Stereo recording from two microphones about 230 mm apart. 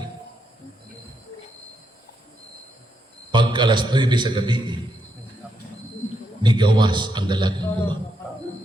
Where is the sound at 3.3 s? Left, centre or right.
Centre.